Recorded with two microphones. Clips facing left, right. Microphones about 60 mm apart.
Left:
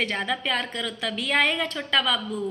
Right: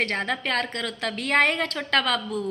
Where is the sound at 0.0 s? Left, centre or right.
Right.